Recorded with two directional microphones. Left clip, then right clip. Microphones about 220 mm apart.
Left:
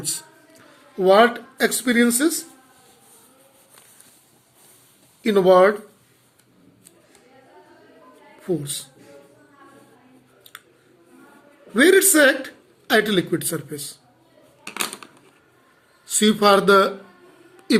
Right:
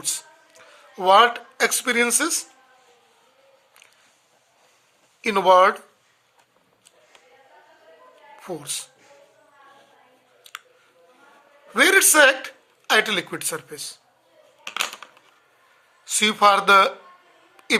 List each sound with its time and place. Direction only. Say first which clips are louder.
0.9 s speech: even; 40° right (ahead or behind)
5.2 s speech: left 1 dB; 45° right (ahead or behind)
8.4 s speech: left 5 dB; 40° right (ahead or behind)
11.7 s speech: left 1 dB; 40° right (ahead or behind)
16.0 s speech: even; 35° right (ahead or behind)